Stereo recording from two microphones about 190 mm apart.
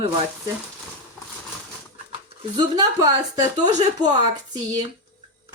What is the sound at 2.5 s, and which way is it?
A woman's voice, 20° right (ahead or behind).